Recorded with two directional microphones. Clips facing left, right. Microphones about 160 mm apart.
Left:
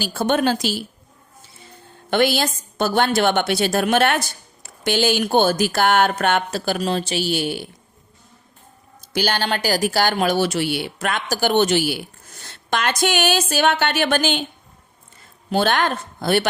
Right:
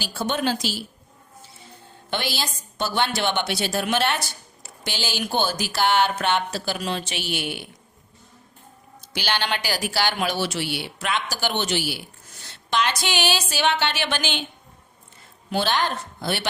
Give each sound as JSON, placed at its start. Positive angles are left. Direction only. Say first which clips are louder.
{"t": 0.0, "sound": "a woman's voice", "louder": "left 6 dB", "side_deg": 50}
{"t": 2.0, "sound": "a woman's voice", "louder": "left 10 dB", "side_deg": 50}
{"t": 9.1, "sound": "a woman's voice", "louder": "left 5 dB", "side_deg": 45}
{"t": 15.4, "sound": "speech", "louder": "left 4 dB", "side_deg": 50}